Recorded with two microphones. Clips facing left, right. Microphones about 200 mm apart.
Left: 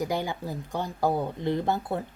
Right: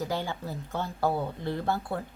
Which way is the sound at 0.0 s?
15° left (ahead or behind).